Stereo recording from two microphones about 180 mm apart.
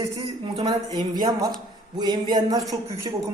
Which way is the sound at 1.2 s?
20° right (ahead or behind).